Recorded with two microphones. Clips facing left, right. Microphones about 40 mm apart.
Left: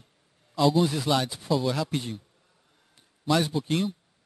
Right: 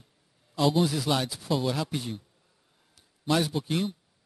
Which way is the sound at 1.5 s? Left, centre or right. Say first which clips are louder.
Left 2 dB; centre.